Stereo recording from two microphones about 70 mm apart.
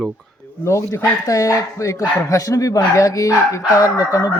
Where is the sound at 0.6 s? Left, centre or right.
Left.